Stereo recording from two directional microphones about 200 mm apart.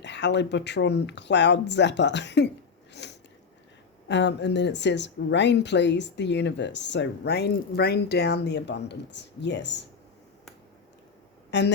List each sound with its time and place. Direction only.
0.0 s speech: 60° left (ahead or behind)
2.9 s biting: 60° left (ahead or behind)
4.1 s speech: 60° left (ahead or behind)